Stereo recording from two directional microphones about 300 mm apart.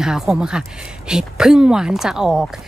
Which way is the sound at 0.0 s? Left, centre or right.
Centre.